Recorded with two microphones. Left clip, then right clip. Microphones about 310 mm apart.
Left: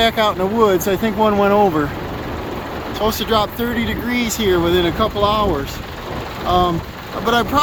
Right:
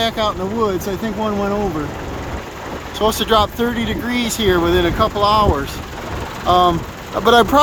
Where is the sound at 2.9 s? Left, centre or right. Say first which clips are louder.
Right 3 dB; centre.